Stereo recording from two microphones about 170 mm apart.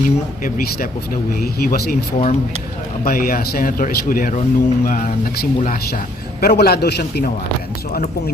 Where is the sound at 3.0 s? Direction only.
55° left (ahead or behind); by 7.3 s 75° left (ahead or behind).